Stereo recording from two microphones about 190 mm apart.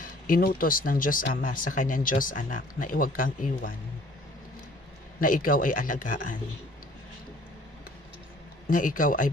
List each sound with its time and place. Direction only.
0.0 s speech: 50° left (ahead or behind)
5.2 s speech: 45° left (ahead or behind)
8.6 s speech: 45° left (ahead or behind)